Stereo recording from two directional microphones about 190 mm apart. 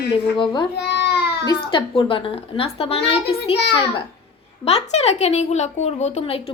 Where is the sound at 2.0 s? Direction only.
25° left (ahead or behind).